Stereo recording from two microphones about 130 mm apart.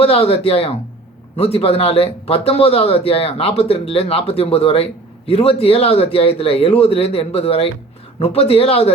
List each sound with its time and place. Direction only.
0.0 s a man's voice: 45° left (ahead or behind)